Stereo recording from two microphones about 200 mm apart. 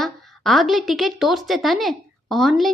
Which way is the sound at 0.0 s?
Centre (ahead or behind).